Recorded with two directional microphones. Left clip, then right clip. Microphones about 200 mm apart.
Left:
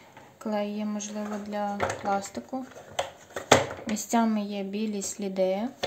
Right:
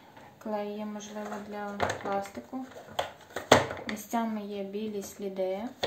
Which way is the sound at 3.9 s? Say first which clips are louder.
Left 9 dB; 60° left (ahead or behind).